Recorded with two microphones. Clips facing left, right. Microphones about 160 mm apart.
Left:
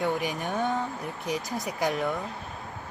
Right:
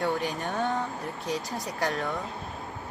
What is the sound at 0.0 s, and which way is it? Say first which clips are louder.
Speech: even; 10° left (ahead or behind).